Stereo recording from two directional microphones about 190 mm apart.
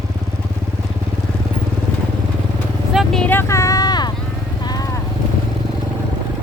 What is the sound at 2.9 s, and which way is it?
Vehicle, centre (ahead or behind).